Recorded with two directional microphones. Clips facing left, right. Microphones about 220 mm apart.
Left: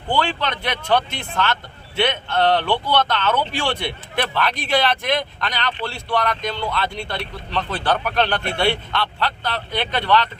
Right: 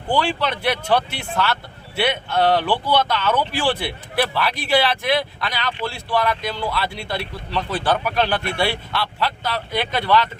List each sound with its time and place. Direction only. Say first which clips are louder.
0.1 s speech: right 1 dB; 10° right (ahead or behind)